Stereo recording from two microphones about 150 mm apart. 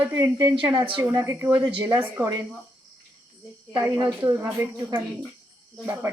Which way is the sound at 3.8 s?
25° right (ahead or behind).